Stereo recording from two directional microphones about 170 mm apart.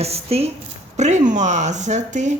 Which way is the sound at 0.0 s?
35° right (ahead or behind).